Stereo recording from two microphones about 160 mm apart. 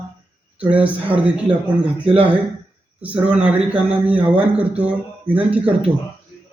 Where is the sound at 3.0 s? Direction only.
5° right (ahead or behind).